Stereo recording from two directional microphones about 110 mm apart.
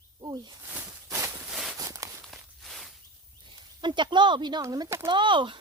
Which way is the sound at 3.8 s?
45° right (ahead or behind).